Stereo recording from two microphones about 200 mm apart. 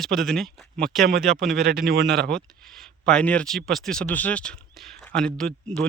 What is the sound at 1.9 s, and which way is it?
Speech, 55° right (ahead or behind).